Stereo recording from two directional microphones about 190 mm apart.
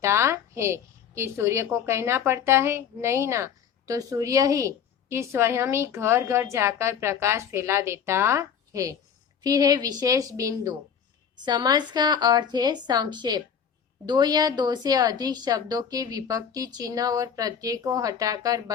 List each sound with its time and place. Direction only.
0.0 s a woman's voice: 15° right (ahead or behind)